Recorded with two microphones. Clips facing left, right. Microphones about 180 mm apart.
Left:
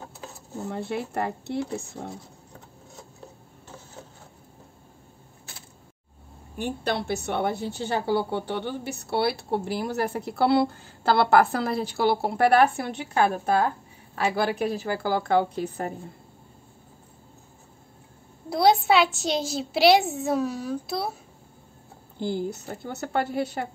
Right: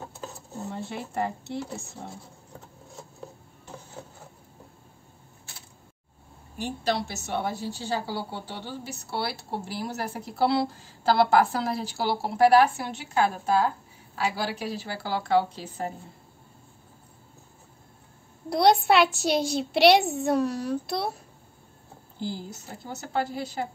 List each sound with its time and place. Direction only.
0.7 s a woman's voice: 60° left (ahead or behind)
6.6 s a woman's voice: 55° left (ahead or behind)
18.5 s a child's voice: centre (ahead or behind)
22.2 s a woman's voice: 60° left (ahead or behind)